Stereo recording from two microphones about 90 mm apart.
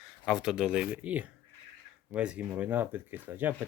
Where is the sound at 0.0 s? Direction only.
5° right (ahead or behind).